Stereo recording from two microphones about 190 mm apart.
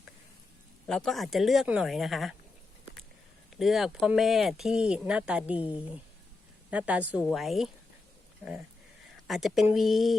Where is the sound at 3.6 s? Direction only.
Centre (ahead or behind).